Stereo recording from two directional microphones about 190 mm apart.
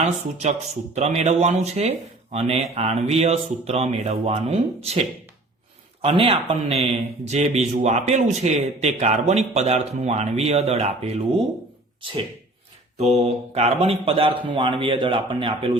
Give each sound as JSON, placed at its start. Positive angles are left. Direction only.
{"t": 0.9, "sound": "speech", "side_deg": -35}
{"t": 6.0, "sound": "speech", "side_deg": -30}
{"t": 13.0, "sound": "speech", "side_deg": -35}